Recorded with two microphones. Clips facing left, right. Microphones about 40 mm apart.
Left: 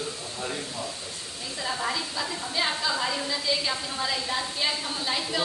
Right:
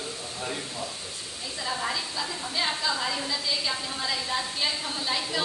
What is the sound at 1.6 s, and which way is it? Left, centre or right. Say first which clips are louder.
A woman's voice: left 1 dB; centre.